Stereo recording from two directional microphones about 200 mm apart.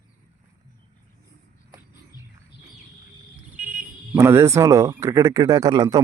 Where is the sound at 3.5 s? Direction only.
40° right (ahead or behind).